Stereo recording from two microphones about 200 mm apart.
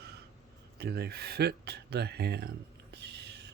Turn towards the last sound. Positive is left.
turn(degrees=-55)  # may be behind; listen again after turning